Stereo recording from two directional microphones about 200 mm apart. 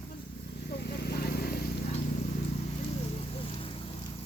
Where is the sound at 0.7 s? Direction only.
50° left (ahead or behind).